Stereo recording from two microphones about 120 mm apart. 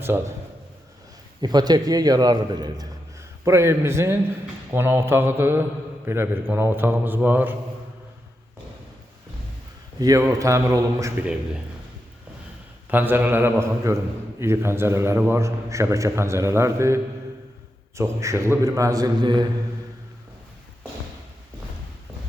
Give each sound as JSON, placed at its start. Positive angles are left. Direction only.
{"t": 0.0, "sound": "a man's voice", "side_deg": -20}
{"t": 1.4, "sound": "a man's voice", "side_deg": -35}
{"t": 3.2, "sound": "a man's voice", "side_deg": -25}
{"t": 10.0, "sound": "a man's voice", "side_deg": -30}
{"t": 12.9, "sound": "a man's voice", "side_deg": -15}